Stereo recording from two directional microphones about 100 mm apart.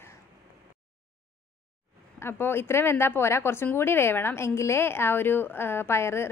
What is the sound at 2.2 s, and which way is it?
Speech, 25° left (ahead or behind).